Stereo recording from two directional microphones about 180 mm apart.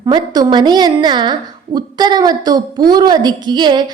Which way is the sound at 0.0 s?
25° right (ahead or behind).